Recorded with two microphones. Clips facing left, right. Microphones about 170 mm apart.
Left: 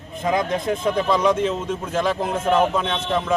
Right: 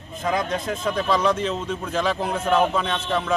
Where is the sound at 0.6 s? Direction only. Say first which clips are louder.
Left 3 dB; 10° left (ahead or behind).